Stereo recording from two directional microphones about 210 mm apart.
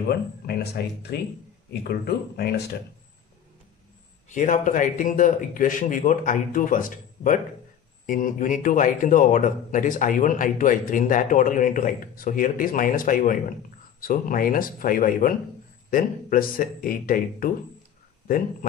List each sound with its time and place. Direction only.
0.8 s speech: 50° left (ahead or behind)
4.3 s a man's voice: 35° left (ahead or behind)